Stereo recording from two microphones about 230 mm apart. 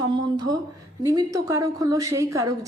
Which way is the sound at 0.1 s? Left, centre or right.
Centre.